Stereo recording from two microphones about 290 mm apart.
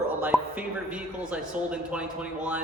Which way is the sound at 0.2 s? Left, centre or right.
Centre.